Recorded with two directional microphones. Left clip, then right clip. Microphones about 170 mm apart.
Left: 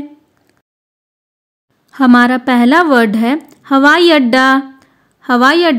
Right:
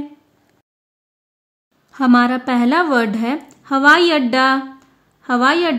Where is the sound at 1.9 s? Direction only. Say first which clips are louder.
Left 5 dB; 30° left (ahead or behind).